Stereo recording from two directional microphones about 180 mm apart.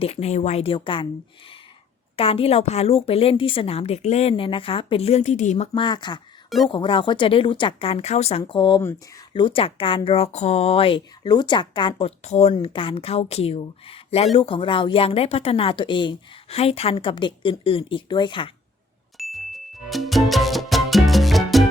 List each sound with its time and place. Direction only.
0.0 s a woman's voice: 35° left (ahead or behind)
2.1 s a woman's voice: 30° left (ahead or behind)
19.1 s music: centre (ahead or behind)